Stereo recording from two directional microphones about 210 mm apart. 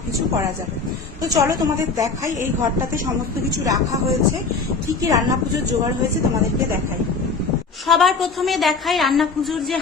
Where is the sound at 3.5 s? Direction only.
15° right (ahead or behind).